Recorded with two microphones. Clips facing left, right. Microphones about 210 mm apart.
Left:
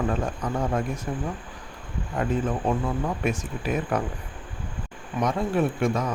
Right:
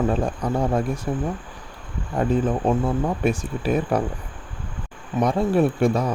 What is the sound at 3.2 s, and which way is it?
Speech, 30° right (ahead or behind).